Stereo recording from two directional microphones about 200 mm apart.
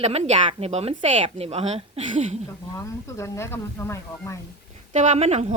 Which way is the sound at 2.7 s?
15° left (ahead or behind).